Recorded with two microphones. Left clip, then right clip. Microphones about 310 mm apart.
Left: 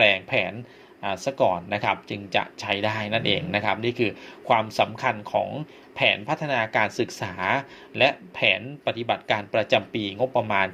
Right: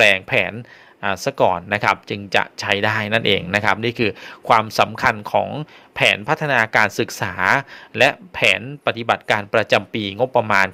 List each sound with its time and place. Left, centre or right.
0.0 s speech: right